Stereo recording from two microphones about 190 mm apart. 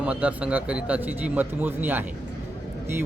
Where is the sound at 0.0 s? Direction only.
5° right (ahead or behind).